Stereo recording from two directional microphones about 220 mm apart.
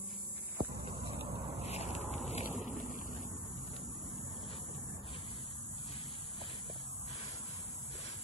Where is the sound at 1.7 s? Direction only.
30° left (ahead or behind).